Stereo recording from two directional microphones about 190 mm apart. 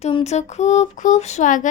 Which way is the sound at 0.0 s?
30° left (ahead or behind).